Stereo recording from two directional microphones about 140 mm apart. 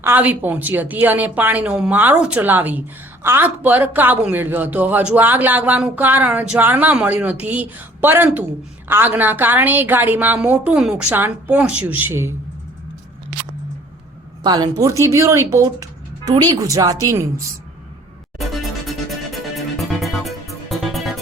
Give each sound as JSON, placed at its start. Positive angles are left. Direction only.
{"t": 0.0, "sound": "speech", "side_deg": -15}
{"t": 14.4, "sound": "speech", "side_deg": -30}
{"t": 18.3, "sound": "music", "side_deg": 0}